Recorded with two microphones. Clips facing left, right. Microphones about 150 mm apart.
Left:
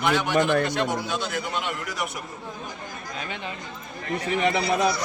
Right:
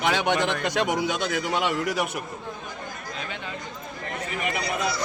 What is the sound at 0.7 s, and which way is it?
Speech, 90° right.